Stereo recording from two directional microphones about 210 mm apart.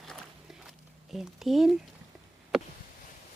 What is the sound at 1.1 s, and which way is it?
Speech, centre (ahead or behind).